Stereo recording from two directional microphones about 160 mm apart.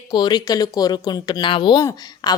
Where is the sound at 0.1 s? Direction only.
25° left (ahead or behind).